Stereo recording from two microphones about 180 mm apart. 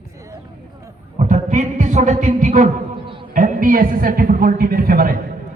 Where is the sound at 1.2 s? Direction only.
40° right (ahead or behind).